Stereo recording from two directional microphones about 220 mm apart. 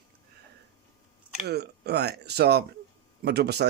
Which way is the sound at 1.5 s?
50° right (ahead or behind).